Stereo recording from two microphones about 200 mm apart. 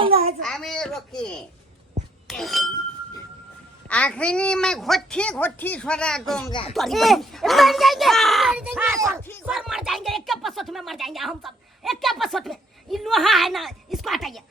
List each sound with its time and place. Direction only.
0.0 s a sound: 30° right (ahead or behind)
0.4 s speech: centre (ahead or behind)
3.8 s speech: 5° left (ahead or behind)
9.0 s speech: 15° right (ahead or behind)
9.5 s speech: centre (ahead or behind)